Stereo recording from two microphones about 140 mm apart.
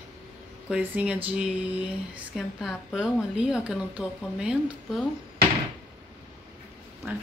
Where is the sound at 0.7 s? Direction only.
10° right (ahead or behind).